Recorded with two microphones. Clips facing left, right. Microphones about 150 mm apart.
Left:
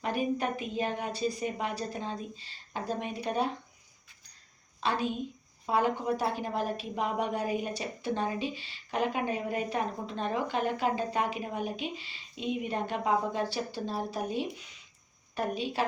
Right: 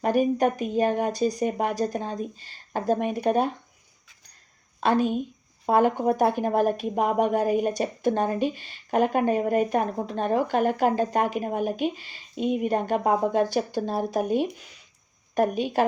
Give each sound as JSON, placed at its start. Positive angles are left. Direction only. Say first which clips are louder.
{"t": 0.0, "sound": "speech", "louder": "right 9 dB", "side_deg": -45}
{"t": 4.8, "sound": "speech", "louder": "right 8 dB", "side_deg": -50}